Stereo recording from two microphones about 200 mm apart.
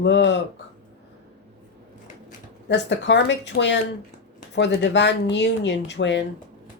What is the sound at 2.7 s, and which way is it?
A woman's voice, 60° left (ahead or behind).